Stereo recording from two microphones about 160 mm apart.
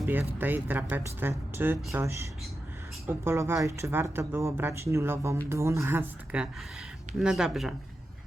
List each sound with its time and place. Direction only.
0.0 s speech: 10° right (ahead or behind)